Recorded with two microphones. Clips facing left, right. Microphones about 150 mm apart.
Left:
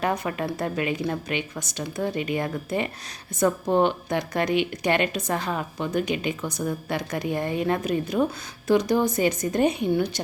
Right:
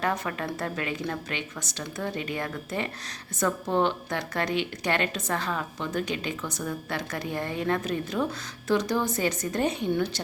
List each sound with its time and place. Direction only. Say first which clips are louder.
0.0 s a woman's voice: left 3 dB; 15° left (ahead or behind)